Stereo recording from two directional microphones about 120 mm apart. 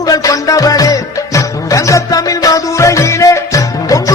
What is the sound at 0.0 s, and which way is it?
Music, 30° left (ahead or behind).